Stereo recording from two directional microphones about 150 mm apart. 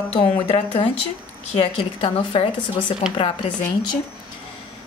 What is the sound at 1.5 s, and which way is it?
Speech, 40° left (ahead or behind).